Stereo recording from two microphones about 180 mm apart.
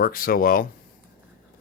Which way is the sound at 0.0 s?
55° left (ahead or behind).